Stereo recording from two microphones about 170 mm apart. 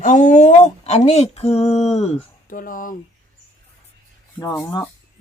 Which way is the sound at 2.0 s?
45° left (ahead or behind).